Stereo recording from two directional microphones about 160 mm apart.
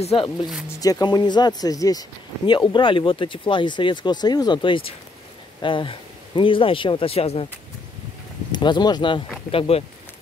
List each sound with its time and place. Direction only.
0.0 s speech: 40° left (ahead or behind)
0.7 s speech: 20° left (ahead or behind); by 7.4 s 40° left (ahead or behind)
8.5 s speech: 30° left (ahead or behind)